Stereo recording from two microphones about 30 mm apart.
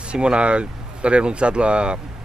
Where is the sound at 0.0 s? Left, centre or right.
Right.